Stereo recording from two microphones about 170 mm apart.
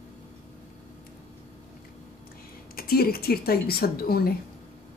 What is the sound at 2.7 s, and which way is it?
Speech, 65° left (ahead or behind).